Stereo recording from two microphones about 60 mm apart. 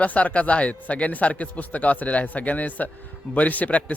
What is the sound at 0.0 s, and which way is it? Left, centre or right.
A man's voice, left.